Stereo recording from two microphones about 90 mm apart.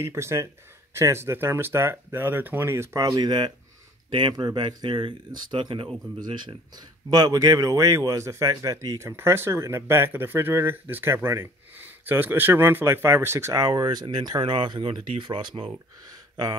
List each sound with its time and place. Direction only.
0.0 s speech: 30° right (ahead or behind); by 3.5 s 50° right (ahead or behind)
4.1 s speech: 60° right (ahead or behind)
7.1 s speech: 45° right (ahead or behind); by 15.6 s 65° right (ahead or behind)